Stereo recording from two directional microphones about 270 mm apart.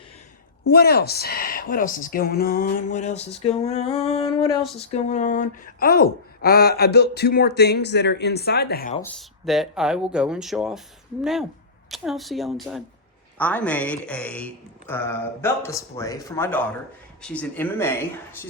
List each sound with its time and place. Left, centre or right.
0.7 s speech: left
9.0 s a man's voice: centre